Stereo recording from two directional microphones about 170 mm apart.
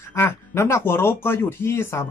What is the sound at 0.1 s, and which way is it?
Speech, 15° left (ahead or behind).